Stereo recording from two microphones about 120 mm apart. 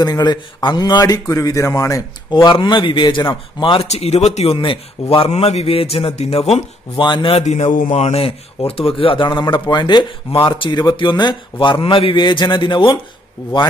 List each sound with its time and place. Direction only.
0.0 s a man's voice: 35° left (ahead or behind)
2.3 s a man's voice: 40° left (ahead or behind)
3.8 s a man's voice: 60° left (ahead or behind)
4.6 s a man's voice: 50° left (ahead or behind)
7.0 s a man's voice: 40° left (ahead or behind)
7.4 s a man's voice: 75° left (ahead or behind); by 13.7 s 40° left (ahead or behind)